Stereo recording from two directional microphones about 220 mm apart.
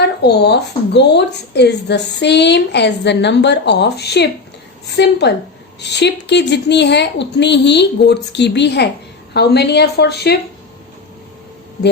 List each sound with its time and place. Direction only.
0.2 s a woman's voice: 50° left (ahead or behind)